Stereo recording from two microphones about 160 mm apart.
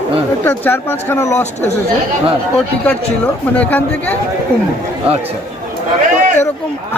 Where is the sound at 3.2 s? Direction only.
10° left (ahead or behind).